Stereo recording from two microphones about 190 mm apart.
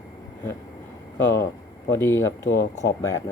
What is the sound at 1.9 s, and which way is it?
Speech, 15° left (ahead or behind).